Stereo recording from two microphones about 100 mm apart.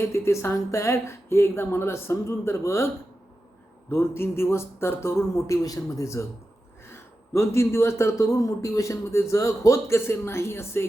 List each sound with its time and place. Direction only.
0.0 s a man's voice: 25° left (ahead or behind)